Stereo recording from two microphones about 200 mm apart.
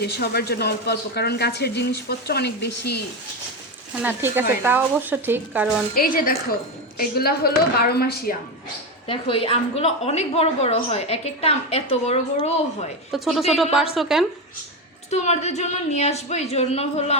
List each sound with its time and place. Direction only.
0.0 s speech: 55° left (ahead or behind)
3.9 s speech: 10° right (ahead or behind)
5.9 s speech: 45° left (ahead or behind)
9.0 s a woman's voice: 25° left (ahead or behind)
13.1 s a woman's voice: centre (ahead or behind)
15.1 s a woman's voice: 35° left (ahead or behind)